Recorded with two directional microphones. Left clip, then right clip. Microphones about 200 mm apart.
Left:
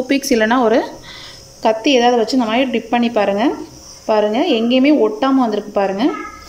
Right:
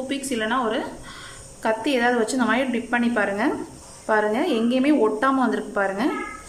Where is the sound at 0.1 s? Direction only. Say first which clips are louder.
Left 11 dB; 25° left (ahead or behind).